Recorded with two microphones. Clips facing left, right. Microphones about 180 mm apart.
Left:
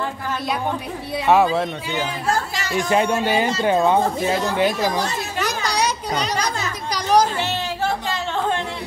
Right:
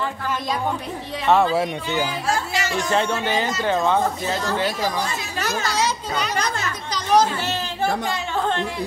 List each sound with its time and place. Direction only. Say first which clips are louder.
1.2 s speech: left 2 dB; 10° left (ahead or behind)
1.5 s a man's voice: right 1 dB; 10° right (ahead or behind)
2.7 s speech: left 4 dB; 10° left (ahead or behind)
5.7 s children playing: left 1 dB; 15° left (ahead or behind)